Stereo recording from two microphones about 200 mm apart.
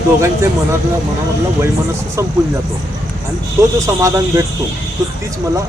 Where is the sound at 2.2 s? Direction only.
15° right (ahead or behind).